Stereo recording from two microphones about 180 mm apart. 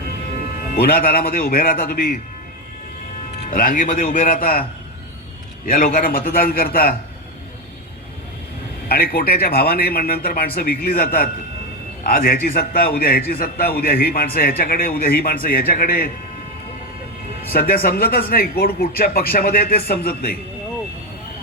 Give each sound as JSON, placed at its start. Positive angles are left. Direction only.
{"t": 0.8, "sound": "a man's voice", "side_deg": 55}
{"t": 3.5, "sound": "a man's voice", "side_deg": 50}
{"t": 5.6, "sound": "a man's voice", "side_deg": 55}
{"t": 8.9, "sound": "a man's voice", "side_deg": 60}
{"t": 17.5, "sound": "a man's voice", "side_deg": 55}